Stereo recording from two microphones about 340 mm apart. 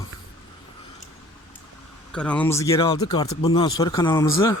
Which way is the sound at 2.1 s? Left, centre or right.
Centre.